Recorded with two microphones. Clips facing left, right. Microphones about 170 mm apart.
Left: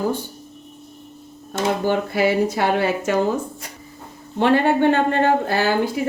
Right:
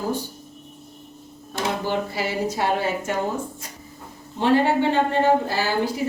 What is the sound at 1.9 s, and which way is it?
Speech, 60° left (ahead or behind).